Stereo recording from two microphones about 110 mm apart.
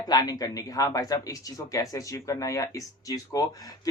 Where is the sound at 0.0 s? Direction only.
35° left (ahead or behind).